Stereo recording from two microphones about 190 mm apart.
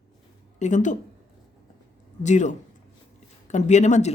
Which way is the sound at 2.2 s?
40° left (ahead or behind).